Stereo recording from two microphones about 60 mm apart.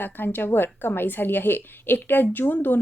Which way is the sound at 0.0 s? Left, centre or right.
Left.